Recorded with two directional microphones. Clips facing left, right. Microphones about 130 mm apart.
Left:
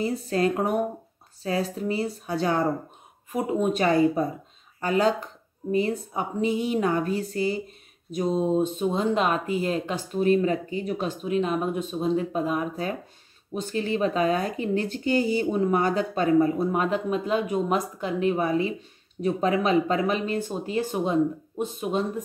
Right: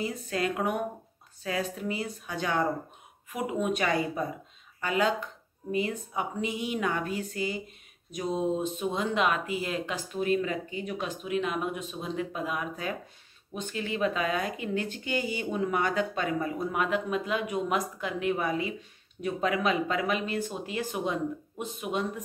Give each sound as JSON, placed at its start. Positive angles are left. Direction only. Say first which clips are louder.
{"t": 0.0, "sound": "speech", "louder": "left 6 dB", "side_deg": 35}